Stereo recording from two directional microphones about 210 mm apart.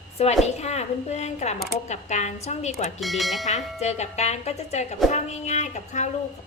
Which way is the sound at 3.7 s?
30° left (ahead or behind).